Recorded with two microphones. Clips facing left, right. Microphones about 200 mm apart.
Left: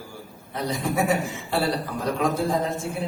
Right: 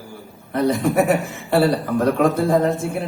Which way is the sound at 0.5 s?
60° right (ahead or behind).